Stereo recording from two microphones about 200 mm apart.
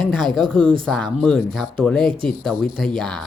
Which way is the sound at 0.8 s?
5° left (ahead or behind).